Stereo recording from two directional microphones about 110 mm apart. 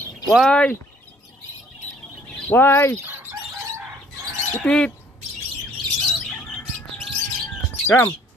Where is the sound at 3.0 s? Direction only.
20° right (ahead or behind).